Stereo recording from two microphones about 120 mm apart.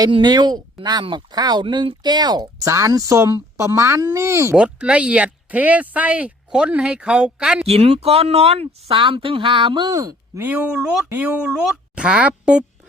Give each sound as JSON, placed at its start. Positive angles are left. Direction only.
{"t": 0.1, "sound": "speech", "side_deg": -35}
{"t": 4.5, "sound": "speech", "side_deg": -10}
{"t": 7.7, "sound": "speech", "side_deg": -60}
{"t": 10.4, "sound": "speech", "side_deg": -15}